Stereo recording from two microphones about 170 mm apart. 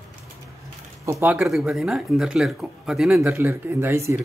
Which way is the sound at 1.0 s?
15° right (ahead or behind).